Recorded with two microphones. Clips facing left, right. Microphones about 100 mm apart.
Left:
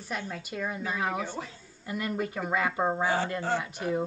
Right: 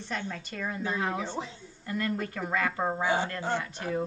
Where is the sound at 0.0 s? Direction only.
10° left (ahead or behind).